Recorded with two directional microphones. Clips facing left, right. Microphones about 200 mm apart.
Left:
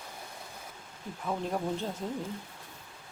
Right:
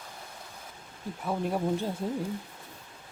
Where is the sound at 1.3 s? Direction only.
10° right (ahead or behind).